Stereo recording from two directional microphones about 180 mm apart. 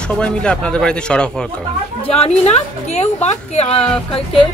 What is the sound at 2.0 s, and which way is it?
A woman's voice, 35° left (ahead or behind).